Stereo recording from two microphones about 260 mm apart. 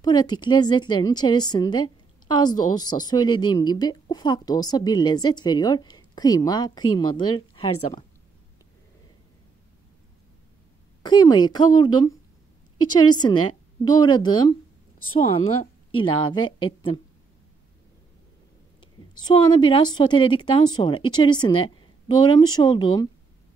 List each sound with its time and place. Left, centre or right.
0.0 s a woman's voice: centre
11.0 s a woman's voice: centre
13.2 s a woman's voice: centre
18.8 s a woman's voice: centre